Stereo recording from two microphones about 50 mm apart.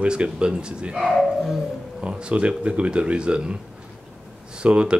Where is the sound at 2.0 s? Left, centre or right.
Right.